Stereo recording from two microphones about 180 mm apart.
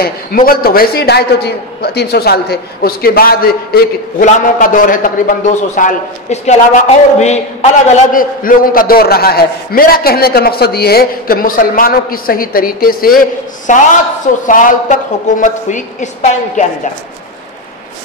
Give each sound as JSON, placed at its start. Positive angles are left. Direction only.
{"t": 0.0, "sound": "a man's voice", "side_deg": 55}
{"t": 4.2, "sound": "a man's voice", "side_deg": 45}